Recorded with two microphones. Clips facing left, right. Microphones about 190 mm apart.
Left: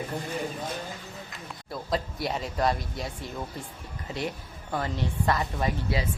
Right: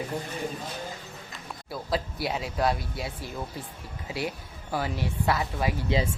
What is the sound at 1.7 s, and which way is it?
Speech, 5° right (ahead or behind).